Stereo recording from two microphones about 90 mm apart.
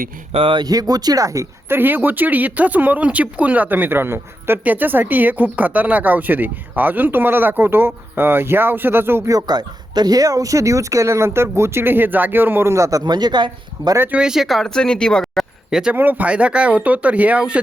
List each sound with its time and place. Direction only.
0.3 s speech: 75° right (ahead or behind)
0.6 s speech: 45° right (ahead or behind)
1.7 s speech: 25° right (ahead or behind)
9.3 s speech: 50° right (ahead or behind)
13.1 s speech: 50° right (ahead or behind)
14.1 s speech: 10° right (ahead or behind); by 15.4 s 5° left (ahead or behind)
15.7 s speech: 10° right (ahead or behind)
16.0 s speech: 20° right (ahead or behind)